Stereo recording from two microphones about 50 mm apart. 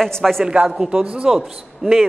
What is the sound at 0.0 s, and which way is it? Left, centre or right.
Speech, centre.